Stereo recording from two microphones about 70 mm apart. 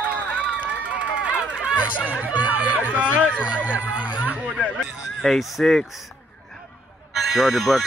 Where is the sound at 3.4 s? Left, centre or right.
Centre.